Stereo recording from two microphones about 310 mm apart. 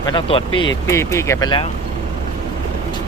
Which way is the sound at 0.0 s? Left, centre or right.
Centre.